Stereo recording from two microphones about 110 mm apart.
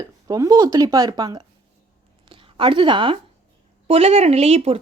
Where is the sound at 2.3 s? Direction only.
50° right (ahead or behind).